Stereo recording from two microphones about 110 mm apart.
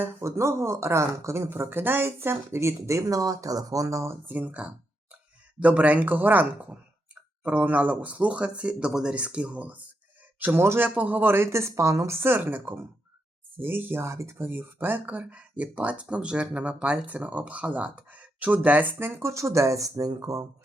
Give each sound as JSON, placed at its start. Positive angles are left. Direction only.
{"t": 0.0, "sound": "speech", "side_deg": -25}
{"t": 4.4, "sound": "speech", "side_deg": -10}